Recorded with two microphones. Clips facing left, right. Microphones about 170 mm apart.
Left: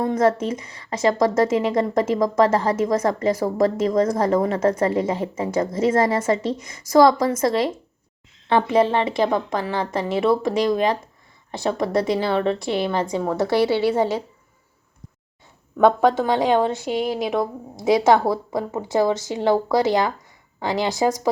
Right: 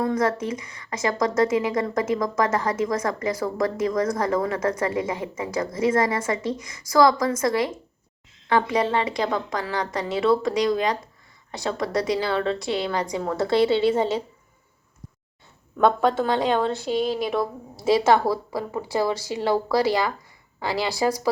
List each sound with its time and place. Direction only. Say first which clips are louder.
0.0 s speech: left 4 dB; 25° left (ahead or behind); by 14.2 s 10° left (ahead or behind)
15.8 s speech: left 3 dB; 20° left (ahead or behind)